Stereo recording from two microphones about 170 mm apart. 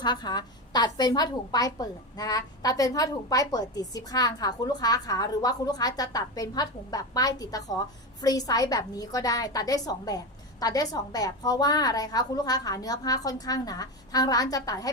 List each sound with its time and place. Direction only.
0.0 s a woman's voice: 25° left (ahead or behind)